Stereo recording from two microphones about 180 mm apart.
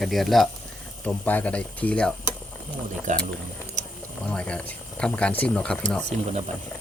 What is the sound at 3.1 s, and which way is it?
Speech, 45° right (ahead or behind).